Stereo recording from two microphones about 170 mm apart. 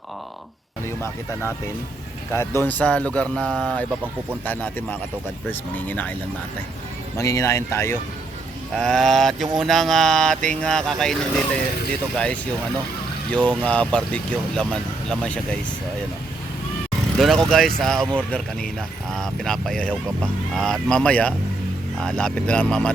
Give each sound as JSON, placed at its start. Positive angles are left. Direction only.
{"t": 0.9, "sound": "speech", "side_deg": 15}
{"t": 7.2, "sound": "speech", "side_deg": 15}
{"t": 8.8, "sound": "speech", "side_deg": 0}
{"t": 13.6, "sound": "speech", "side_deg": 5}
{"t": 17.2, "sound": "speech", "side_deg": 0}